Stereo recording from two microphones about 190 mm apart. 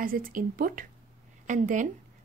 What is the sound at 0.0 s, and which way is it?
A woman's voice, 50° right (ahead or behind).